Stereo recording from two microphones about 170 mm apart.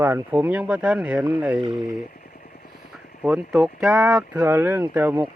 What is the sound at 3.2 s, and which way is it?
Speech, 10° right (ahead or behind).